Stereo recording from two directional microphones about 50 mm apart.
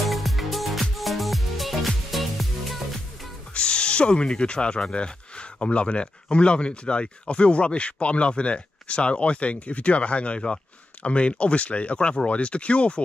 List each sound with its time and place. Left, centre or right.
0.0 s music: centre
3.5 s speech: centre